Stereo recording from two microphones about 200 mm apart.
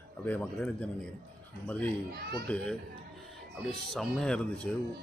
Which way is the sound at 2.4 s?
5° left (ahead or behind).